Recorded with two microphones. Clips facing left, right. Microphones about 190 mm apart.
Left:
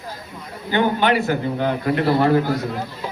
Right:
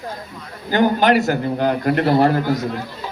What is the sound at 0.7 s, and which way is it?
A man's voice, 40° right (ahead or behind).